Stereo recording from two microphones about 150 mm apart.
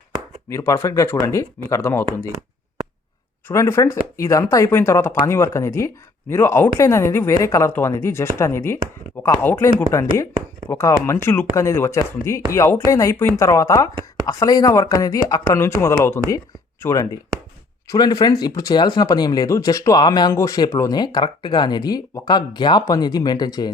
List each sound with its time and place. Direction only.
0.5 s speech: 20° left (ahead or behind)
3.5 s speech: 20° left (ahead or behind)